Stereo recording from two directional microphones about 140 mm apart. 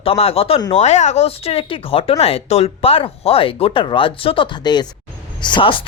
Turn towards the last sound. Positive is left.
turn(degrees=35)  # may be behind; listen again after turning